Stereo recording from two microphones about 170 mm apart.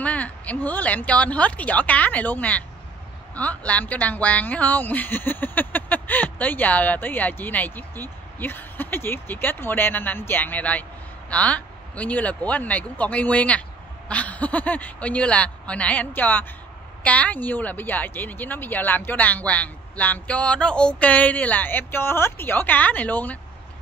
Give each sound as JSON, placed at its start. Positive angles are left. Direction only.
{"t": 0.0, "sound": "speech", "side_deg": 10}